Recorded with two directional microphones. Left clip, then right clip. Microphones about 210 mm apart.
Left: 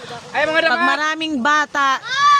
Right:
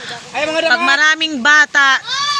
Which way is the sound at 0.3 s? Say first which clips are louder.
Even; 45° right (ahead or behind).